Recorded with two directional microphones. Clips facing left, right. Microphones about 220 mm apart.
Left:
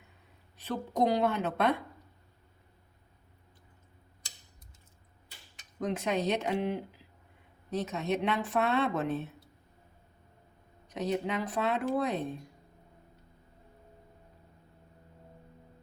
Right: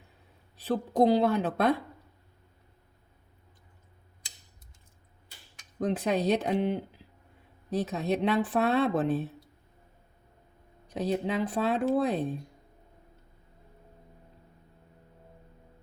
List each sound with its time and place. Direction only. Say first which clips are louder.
0.5 s speech: right 6 dB; 30° right (ahead or behind)
5.8 s speech: right 3 dB; 35° right (ahead or behind)
10.8 s speech: right 2 dB; 30° right (ahead or behind)